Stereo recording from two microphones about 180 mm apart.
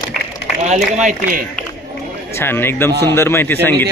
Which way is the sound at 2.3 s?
10° left (ahead or behind).